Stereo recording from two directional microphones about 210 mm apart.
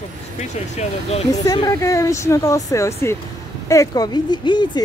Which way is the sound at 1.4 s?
15° left (ahead or behind).